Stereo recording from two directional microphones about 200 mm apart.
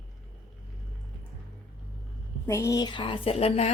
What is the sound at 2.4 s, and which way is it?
Speech, 15° left (ahead or behind).